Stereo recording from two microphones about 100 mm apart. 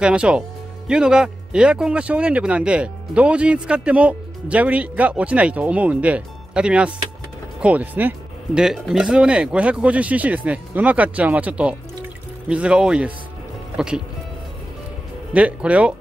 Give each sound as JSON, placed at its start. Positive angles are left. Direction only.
{"t": 0.0, "sound": "speech", "side_deg": -10}
{"t": 8.5, "sound": "speech", "side_deg": -5}
{"t": 15.3, "sound": "speech", "side_deg": -15}